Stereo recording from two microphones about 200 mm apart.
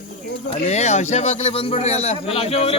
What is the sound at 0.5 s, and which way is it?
A man's voice, 30° left (ahead or behind).